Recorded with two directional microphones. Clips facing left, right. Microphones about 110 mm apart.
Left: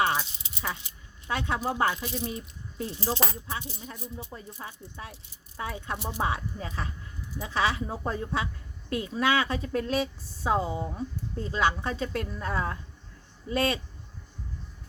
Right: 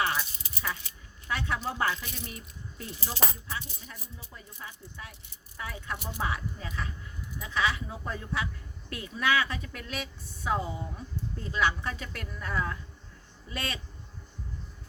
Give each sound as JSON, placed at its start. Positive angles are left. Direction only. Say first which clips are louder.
{"t": 0.0, "sound": "rattle", "louder": "left 4 dB", "side_deg": 25}
{"t": 1.3, "sound": "a woman's voice", "louder": "left 3 dB", "side_deg": 25}
{"t": 4.3, "sound": "a woman's voice", "louder": "left 5 dB", "side_deg": 30}